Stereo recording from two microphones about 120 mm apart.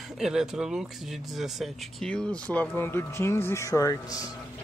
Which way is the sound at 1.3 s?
Centre (ahead or behind).